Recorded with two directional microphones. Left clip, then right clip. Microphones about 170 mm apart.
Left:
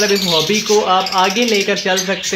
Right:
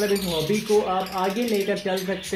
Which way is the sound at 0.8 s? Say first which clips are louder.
Left 11 dB; 15° left (ahead or behind).